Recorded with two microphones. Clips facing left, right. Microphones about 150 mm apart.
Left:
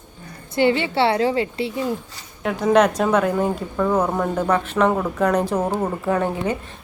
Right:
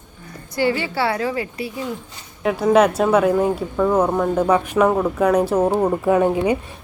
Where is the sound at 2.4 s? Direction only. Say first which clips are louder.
Right 2 dB; 5° right (ahead or behind).